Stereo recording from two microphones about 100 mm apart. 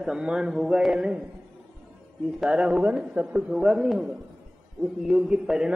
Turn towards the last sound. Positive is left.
turn(degrees=-5)  # may be behind; listen again after turning